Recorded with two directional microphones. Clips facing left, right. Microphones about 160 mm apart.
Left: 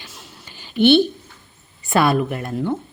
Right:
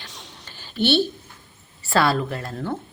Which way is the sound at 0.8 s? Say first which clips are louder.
Left 7 dB; 55° left (ahead or behind).